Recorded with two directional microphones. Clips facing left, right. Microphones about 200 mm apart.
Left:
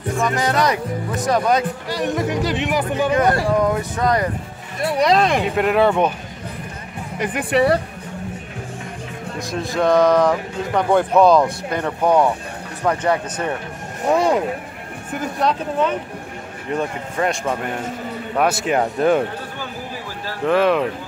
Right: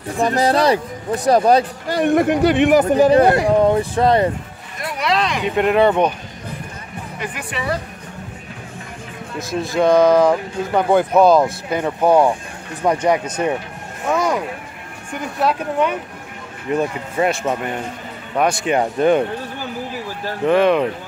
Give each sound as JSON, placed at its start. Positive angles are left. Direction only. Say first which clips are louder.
{"t": 0.2, "sound": "speech", "louder": "right 4 dB", "side_deg": -35}
{"t": 1.9, "sound": "speech", "louder": "right 9 dB", "side_deg": -55}
{"t": 4.7, "sound": "speech", "louder": "left 4 dB", "side_deg": 30}
{"t": 5.5, "sound": "speech", "louder": "right 2 dB", "side_deg": 0}
{"t": 7.3, "sound": "speech", "louder": "left 9 dB", "side_deg": 65}
{"t": 9.4, "sound": "speech", "louder": "right 3 dB", "side_deg": 0}
{"t": 14.0, "sound": "a sound", "louder": "left 2 dB", "side_deg": 30}
{"t": 15.4, "sound": "speech", "louder": "right 2 dB", "side_deg": -10}
{"t": 20.4, "sound": "speech", "louder": "right 2 dB", "side_deg": 0}